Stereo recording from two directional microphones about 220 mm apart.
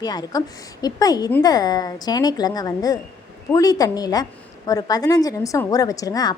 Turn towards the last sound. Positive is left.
turn(degrees=15)  # may be behind; listen again after turning